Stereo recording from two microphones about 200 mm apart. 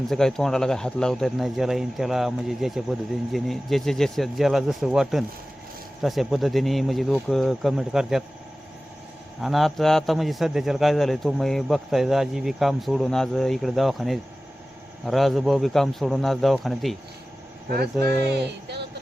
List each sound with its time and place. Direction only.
0.1 s a man's voice: centre (ahead or behind)
9.4 s a man's voice: centre (ahead or behind)
18.0 s speech: 55° right (ahead or behind)